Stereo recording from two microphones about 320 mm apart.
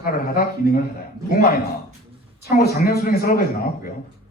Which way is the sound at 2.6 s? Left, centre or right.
Left.